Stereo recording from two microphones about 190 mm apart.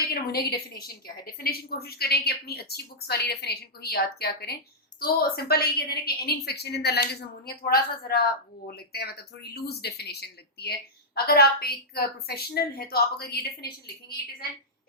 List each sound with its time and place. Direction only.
0.1 s a woman's voice: 55° left (ahead or behind)